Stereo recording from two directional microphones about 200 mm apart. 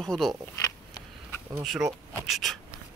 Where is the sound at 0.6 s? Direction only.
15° left (ahead or behind).